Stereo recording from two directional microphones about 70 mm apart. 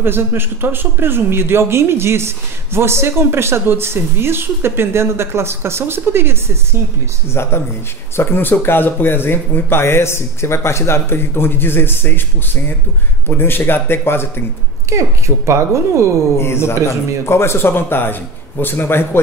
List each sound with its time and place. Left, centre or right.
0.0 s speech: right
7.4 s speech: left
13.4 s speech: left
14.9 s speech: right
16.3 s speech: left